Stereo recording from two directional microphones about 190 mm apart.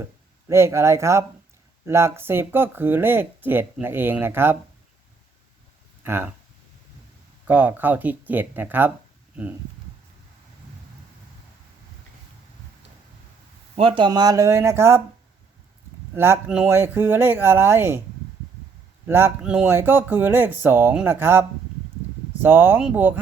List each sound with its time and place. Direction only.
0.0 s speech: 15° right (ahead or behind)
6.0 s speech: 10° right (ahead or behind)
7.4 s speech: 10° right (ahead or behind)
13.7 s speech: 25° right (ahead or behind)
16.1 s speech: 10° right (ahead or behind)
19.0 s speech: 10° right (ahead or behind)